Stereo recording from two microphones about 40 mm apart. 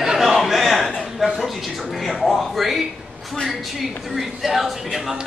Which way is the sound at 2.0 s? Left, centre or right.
Centre.